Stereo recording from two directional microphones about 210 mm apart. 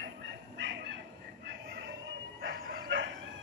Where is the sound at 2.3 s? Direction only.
55° right (ahead or behind).